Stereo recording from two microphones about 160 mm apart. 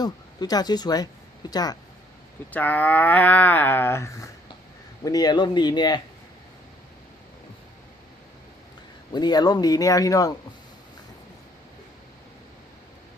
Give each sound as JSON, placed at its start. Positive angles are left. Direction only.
{"t": 0.0, "sound": "speech", "side_deg": 25}
{"t": 2.5, "sound": "speech", "side_deg": 10}
{"t": 9.1, "sound": "speech", "side_deg": 25}